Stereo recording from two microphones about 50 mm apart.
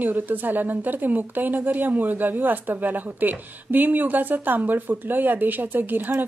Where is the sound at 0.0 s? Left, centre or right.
Right.